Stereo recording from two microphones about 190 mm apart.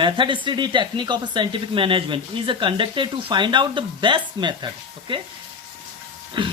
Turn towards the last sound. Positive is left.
turn(degrees=-25)  # may be behind; listen again after turning